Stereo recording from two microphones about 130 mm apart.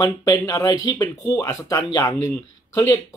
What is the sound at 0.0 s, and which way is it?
Speech, 30° left (ahead or behind).